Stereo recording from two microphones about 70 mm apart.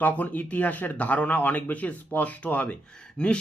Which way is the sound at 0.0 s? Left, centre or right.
Left.